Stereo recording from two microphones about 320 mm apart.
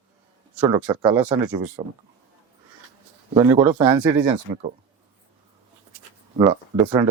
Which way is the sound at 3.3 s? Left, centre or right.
Centre.